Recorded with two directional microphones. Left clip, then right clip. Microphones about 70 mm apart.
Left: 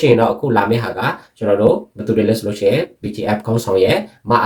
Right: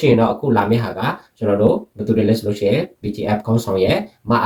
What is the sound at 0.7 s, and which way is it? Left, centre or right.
Speech, left.